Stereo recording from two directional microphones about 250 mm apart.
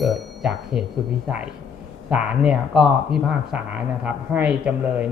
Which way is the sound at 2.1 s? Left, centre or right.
Centre.